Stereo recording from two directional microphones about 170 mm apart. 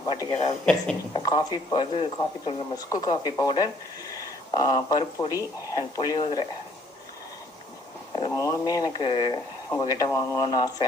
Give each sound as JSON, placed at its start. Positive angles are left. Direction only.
{"t": 0.0, "sound": "speech", "side_deg": 25}
{"t": 0.6, "sound": "speech", "side_deg": 5}
{"t": 1.1, "sound": "speech", "side_deg": 25}
{"t": 8.3, "sound": "speech", "side_deg": 20}